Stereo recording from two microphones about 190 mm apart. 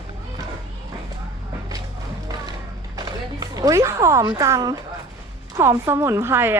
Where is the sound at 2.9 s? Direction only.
20° right (ahead or behind).